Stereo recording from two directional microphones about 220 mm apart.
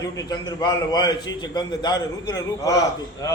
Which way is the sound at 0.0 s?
15° left (ahead or behind).